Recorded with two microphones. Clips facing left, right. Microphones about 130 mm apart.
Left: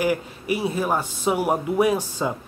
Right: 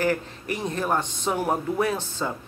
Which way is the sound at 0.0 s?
10° left (ahead or behind).